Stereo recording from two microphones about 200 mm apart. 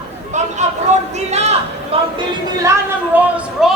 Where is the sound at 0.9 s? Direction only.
35° right (ahead or behind).